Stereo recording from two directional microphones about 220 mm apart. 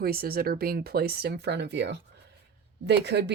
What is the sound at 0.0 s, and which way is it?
Speech, 45° right (ahead or behind).